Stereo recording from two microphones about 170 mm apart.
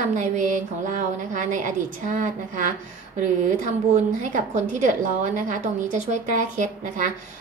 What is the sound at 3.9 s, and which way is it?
A woman's voice, 45° right (ahead or behind).